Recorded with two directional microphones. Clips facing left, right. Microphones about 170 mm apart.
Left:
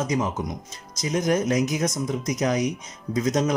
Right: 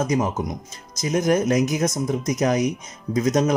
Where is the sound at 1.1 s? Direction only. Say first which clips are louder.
Right 3 dB; 45° right (ahead or behind).